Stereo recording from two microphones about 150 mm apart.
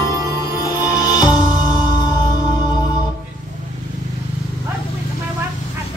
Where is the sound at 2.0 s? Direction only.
25° left (ahead or behind).